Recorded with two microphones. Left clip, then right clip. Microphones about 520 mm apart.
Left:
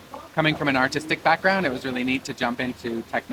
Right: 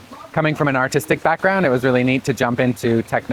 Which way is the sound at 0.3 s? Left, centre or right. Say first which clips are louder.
Right 4 dB; right.